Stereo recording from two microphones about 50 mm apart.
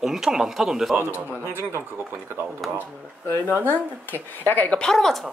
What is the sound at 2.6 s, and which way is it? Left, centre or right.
Speech, centre.